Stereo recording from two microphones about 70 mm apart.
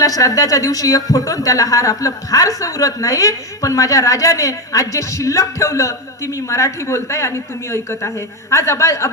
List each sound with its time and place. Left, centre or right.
0.0 s a woman's voice: left